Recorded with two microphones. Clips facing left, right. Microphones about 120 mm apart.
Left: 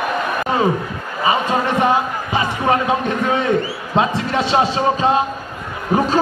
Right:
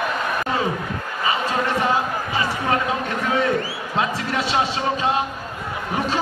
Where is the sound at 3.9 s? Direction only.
25° left (ahead or behind).